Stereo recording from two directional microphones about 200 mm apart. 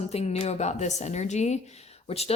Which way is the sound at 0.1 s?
30° left (ahead or behind).